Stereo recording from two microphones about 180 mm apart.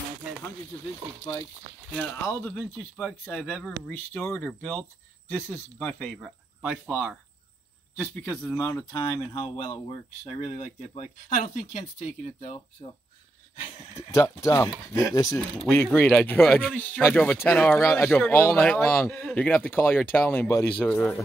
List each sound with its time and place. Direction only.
2.2 s speech: 10° left (ahead or behind)
8.5 s speech: 20° left (ahead or behind)
9.0 s speech: 30° left (ahead or behind)
13.9 s speech: 15° left (ahead or behind)